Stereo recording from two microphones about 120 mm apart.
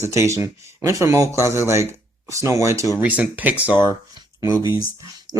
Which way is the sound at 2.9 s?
15° right (ahead or behind).